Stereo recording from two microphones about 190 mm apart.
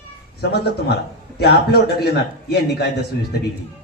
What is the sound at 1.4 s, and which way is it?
Speech, 55° left (ahead or behind).